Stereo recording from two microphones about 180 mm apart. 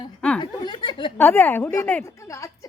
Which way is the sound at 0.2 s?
5° left (ahead or behind).